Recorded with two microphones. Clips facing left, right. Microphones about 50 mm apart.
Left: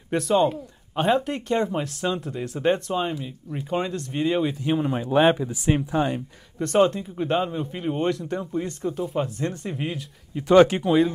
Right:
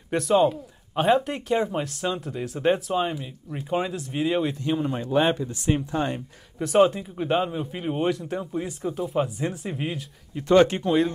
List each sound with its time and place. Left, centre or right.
0.1 s speech: centre
4.6 s speech: centre
6.1 s speech: centre
10.4 s speech: centre
10.8 s speech: centre